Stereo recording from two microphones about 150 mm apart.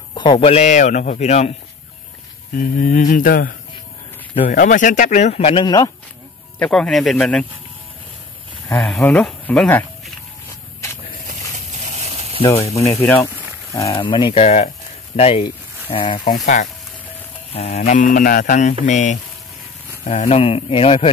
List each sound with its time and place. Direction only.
0.1 s speech: 35° left (ahead or behind); by 1.5 s 50° left (ahead or behind)
2.5 s speech: 65° left (ahead or behind); by 5.6 s 45° left (ahead or behind)
5.6 s speech: 25° left (ahead or behind)
6.6 s speech: 5° left (ahead or behind)
8.7 s speech: 5° left (ahead or behind)
10.8 s a sound: 20° left (ahead or behind)
11.2 s a sound: 55° right (ahead or behind)
13.0 s speech: centre (ahead or behind)
13.7 s a man's voice: 20° left (ahead or behind)
16.3 s speech: 55° left (ahead or behind)
17.5 s speech: 45° left (ahead or behind)
20.1 s a man's voice: 45° left (ahead or behind)